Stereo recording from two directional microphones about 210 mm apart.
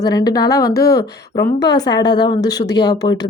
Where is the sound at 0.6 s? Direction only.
50° left (ahead or behind).